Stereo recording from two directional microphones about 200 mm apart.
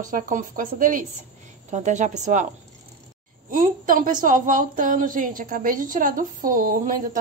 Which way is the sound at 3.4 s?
40° right (ahead or behind).